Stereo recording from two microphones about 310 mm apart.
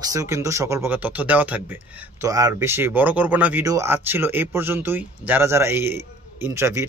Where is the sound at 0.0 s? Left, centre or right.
Centre.